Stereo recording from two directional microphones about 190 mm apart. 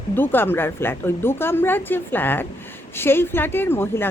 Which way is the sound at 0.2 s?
10° left (ahead or behind).